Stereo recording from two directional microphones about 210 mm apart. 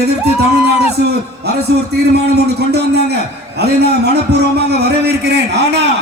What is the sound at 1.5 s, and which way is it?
A man's voice, 50° right (ahead or behind).